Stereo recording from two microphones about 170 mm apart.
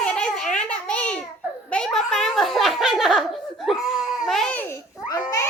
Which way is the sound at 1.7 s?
5° left (ahead or behind).